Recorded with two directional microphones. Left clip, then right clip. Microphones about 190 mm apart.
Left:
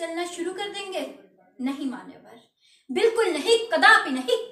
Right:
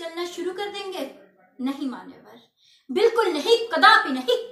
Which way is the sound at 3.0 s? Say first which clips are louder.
Right 2 dB; centre (ahead or behind).